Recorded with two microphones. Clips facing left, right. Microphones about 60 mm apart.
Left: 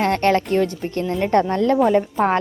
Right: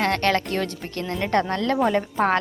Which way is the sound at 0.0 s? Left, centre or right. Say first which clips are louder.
Left 4 dB; left.